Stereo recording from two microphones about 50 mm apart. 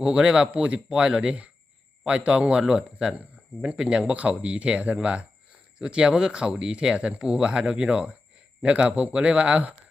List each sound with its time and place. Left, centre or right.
0.0 s a man's voice: centre
0.4 s speech: right